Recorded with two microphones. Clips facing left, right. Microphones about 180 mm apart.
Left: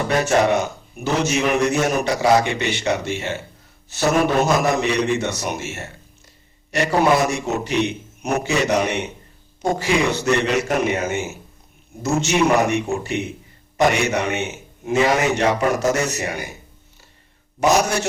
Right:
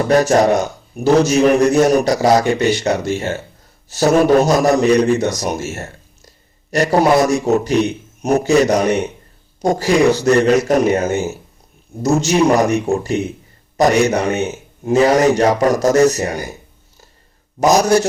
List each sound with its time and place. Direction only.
0.1 s a man's voice: 40° right (ahead or behind)
17.6 s a man's voice: 40° right (ahead or behind)